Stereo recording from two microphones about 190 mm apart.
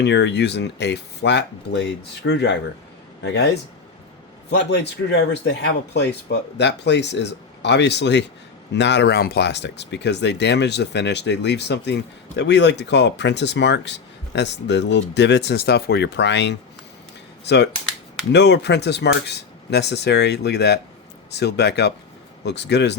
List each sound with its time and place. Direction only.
0.0 s speech: 65° left (ahead or behind)